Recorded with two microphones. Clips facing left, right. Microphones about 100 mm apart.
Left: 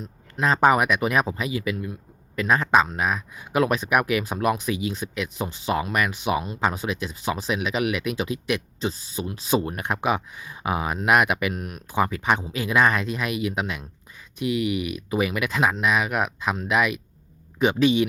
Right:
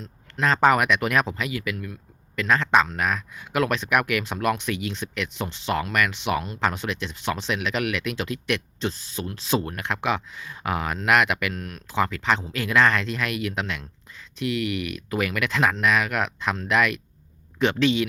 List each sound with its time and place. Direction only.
0.0 s speech: 10° left (ahead or behind)